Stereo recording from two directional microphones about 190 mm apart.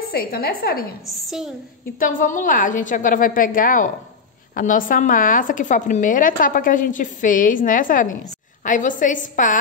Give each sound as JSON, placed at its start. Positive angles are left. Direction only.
{"t": 0.1, "sound": "a woman's voice", "side_deg": 50}
{"t": 1.0, "sound": "a woman's voice", "side_deg": 0}
{"t": 2.0, "sound": "a woman's voice", "side_deg": 45}